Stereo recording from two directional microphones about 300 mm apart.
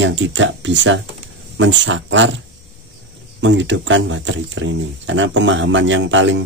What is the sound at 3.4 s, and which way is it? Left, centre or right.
Speech, right.